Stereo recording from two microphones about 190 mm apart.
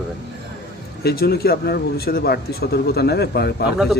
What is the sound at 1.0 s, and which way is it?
Speech, 55° left (ahead or behind).